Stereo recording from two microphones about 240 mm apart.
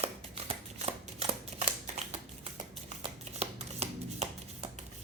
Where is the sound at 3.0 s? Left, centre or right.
Right.